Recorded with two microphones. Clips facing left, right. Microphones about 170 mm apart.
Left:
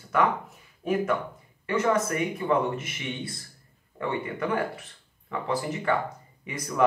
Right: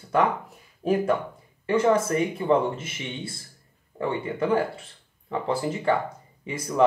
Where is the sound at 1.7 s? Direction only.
30° right (ahead or behind).